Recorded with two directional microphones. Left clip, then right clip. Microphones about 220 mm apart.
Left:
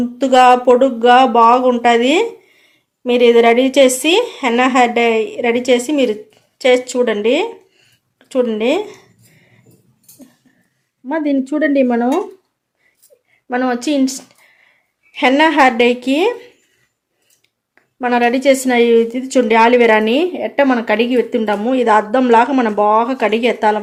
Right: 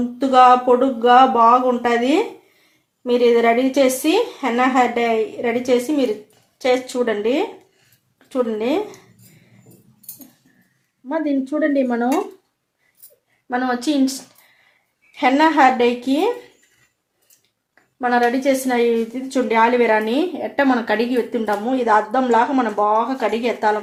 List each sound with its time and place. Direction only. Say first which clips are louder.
0.2 s a woman's voice: left 2 dB; 40° left (ahead or behind)
11.0 s a woman's voice: left 4 dB; 45° left (ahead or behind)
13.5 s a woman's voice: left 4 dB; 35° left (ahead or behind)
18.0 s a woman's voice: left 4 dB; 35° left (ahead or behind)